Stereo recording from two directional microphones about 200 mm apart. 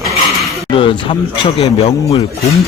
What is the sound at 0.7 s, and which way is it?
Speech, 25° left (ahead or behind).